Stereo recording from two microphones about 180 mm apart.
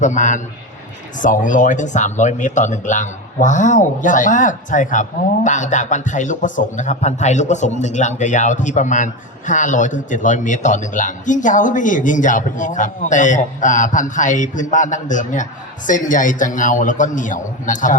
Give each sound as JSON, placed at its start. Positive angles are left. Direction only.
{"t": 0.0, "sound": "speech", "side_deg": 40}